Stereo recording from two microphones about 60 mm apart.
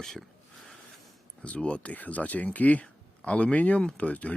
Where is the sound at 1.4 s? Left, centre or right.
Centre.